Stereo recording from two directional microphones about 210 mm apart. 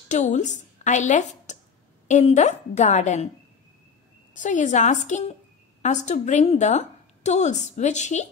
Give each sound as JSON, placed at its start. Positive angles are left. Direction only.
{"t": 0.1, "sound": "a woman's voice", "side_deg": 35}
{"t": 4.3, "sound": "a woman's voice", "side_deg": 35}